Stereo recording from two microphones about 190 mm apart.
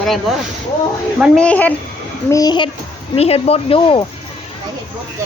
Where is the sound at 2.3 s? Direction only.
20° left (ahead or behind).